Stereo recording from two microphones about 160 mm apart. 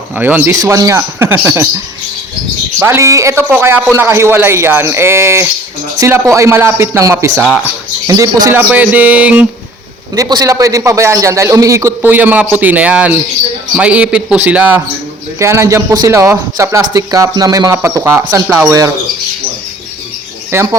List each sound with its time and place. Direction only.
0.2 s a man's voice: 10° right (ahead or behind)
2.8 s a man's voice: 15° right (ahead or behind)
7.3 s speech: centre (ahead or behind)
8.0 s a man's voice: 20° right (ahead or behind)
10.2 s a man's voice: 25° right (ahead or behind)
20.5 s a man's voice: 15° right (ahead or behind)